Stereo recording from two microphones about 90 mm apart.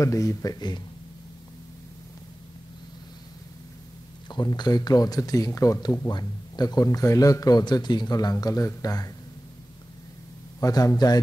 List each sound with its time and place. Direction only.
0.0 s speech: 35° left (ahead or behind)
4.3 s speech: 55° left (ahead or behind)
10.6 s speech: 40° left (ahead or behind)